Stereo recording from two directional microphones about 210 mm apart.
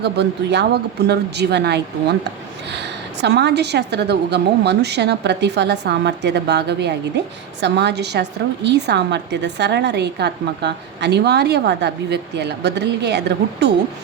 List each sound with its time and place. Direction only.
0.0 s a woman's voice: 55° right (ahead or behind)